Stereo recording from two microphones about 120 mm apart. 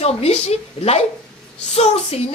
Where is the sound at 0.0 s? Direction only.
60° left (ahead or behind).